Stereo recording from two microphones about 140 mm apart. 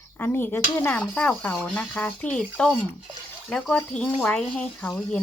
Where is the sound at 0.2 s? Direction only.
15° left (ahead or behind).